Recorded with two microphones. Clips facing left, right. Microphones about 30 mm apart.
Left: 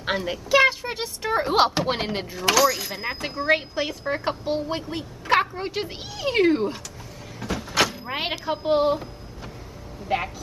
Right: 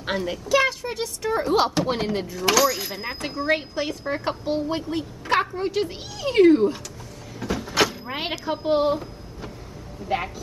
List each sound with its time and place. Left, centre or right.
0.0 s speech: centre
2.4 s speech: centre
7.3 s door: centre
10.0 s speech: centre